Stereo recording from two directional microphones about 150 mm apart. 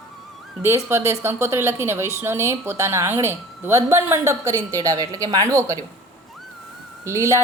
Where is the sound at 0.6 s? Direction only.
15° right (ahead or behind).